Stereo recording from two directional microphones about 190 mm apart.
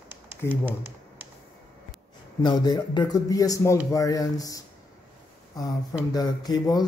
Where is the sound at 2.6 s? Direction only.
20° left (ahead or behind).